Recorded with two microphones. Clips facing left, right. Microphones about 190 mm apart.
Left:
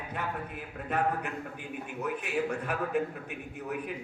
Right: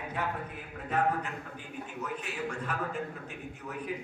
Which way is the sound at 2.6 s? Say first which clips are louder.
Left 4 dB; 60° left (ahead or behind).